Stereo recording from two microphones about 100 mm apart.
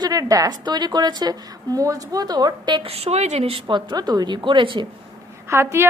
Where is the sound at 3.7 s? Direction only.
50° right (ahead or behind).